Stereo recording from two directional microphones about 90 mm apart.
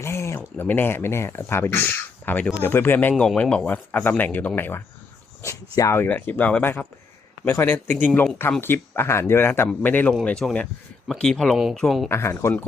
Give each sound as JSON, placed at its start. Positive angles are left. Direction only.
{"t": 0.0, "sound": "a sound", "side_deg": 30}
{"t": 0.3, "sound": "speech", "side_deg": 20}
{"t": 3.2, "sound": "speech", "side_deg": 10}
{"t": 5.4, "sound": "speech", "side_deg": 35}
{"t": 6.0, "sound": "speech", "side_deg": 20}
{"t": 10.4, "sound": "speech", "side_deg": 5}
{"t": 12.0, "sound": "speech", "side_deg": 30}